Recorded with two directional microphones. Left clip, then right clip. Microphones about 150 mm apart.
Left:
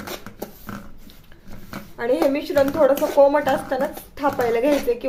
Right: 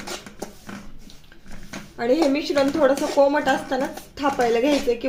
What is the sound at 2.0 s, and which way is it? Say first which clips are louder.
A woman's voice: even; 30° right (ahead or behind).